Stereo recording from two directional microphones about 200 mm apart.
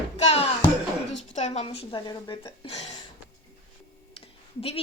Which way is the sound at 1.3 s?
35° left (ahead or behind).